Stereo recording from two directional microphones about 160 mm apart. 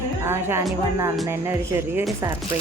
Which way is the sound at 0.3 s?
15° right (ahead or behind).